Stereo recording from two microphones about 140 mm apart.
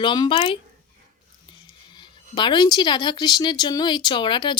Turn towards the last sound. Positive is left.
turn(degrees=35)  # may be behind; listen again after turning